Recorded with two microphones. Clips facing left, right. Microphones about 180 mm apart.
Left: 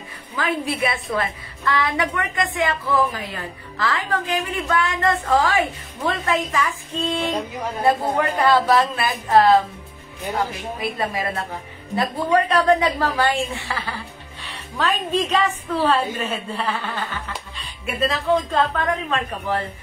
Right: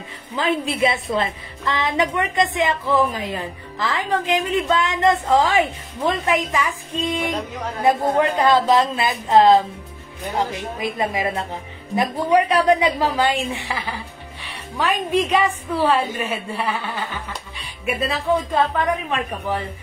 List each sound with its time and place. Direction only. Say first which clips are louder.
0.4 s a woman's voice: right 3 dB; 25° right (ahead or behind)
10.8 s a woman's voice: right 2 dB; 20° right (ahead or behind)